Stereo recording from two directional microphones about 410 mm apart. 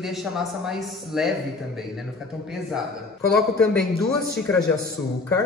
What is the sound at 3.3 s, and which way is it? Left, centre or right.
A man's voice, centre.